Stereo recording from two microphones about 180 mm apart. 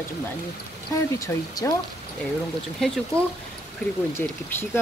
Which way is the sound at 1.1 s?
20° left (ahead or behind).